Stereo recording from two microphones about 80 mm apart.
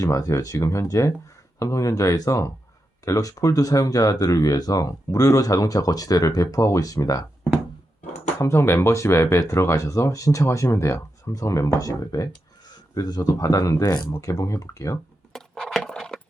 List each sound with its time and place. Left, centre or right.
0.0 s speech: left
8.4 s speech: left
15.3 s a sound: centre